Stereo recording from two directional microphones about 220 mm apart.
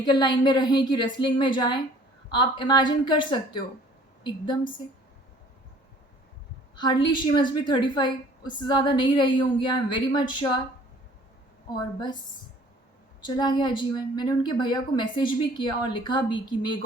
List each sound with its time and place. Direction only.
0.0 s a woman's voice: 20° left (ahead or behind)
6.7 s a woman's voice: 20° left (ahead or behind)
13.2 s a woman's voice: 20° left (ahead or behind)